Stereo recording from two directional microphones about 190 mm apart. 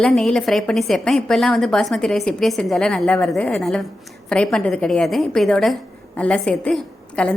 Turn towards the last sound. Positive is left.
turn(degrees=5)  # may be behind; listen again after turning